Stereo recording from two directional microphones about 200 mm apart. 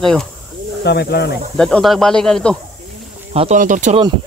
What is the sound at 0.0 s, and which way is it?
Speech, centre (ahead or behind).